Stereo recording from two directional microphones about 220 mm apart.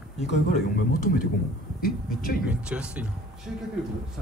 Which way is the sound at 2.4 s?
5° right (ahead or behind).